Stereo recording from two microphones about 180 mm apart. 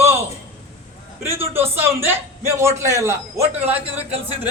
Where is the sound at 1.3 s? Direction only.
15° right (ahead or behind).